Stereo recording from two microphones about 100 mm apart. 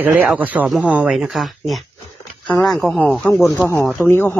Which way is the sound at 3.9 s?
20° left (ahead or behind).